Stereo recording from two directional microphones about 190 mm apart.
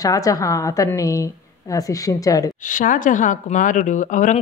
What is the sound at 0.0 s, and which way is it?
A woman's voice, 20° left (ahead or behind).